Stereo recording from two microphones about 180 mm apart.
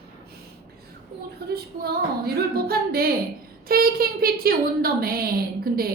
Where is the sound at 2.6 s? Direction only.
55° right (ahead or behind).